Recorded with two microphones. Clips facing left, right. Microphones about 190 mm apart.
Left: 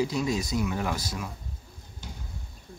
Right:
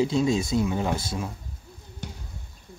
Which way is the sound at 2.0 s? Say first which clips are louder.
Right 5 dB; 65° right (ahead or behind).